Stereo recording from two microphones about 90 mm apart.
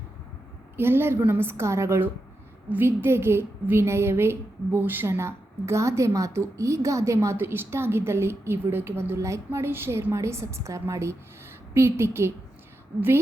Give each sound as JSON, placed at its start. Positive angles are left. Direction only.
{"t": 0.8, "sound": "a woman's voice", "side_deg": -25}